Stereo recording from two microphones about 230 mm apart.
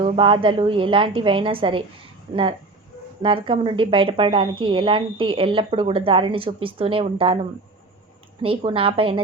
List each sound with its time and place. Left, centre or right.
0.0 s a woman's voice: right
8.4 s a woman's voice: right